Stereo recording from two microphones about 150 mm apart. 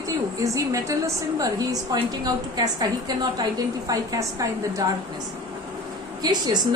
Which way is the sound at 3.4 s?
25° right (ahead or behind).